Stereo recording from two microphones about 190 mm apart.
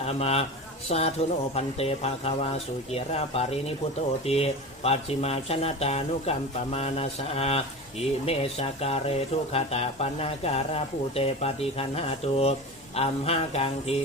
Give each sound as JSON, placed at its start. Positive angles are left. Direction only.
{"t": 0.0, "sound": "speech", "side_deg": 35}